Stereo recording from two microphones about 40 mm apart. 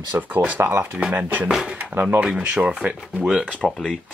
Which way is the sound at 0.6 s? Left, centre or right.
Right.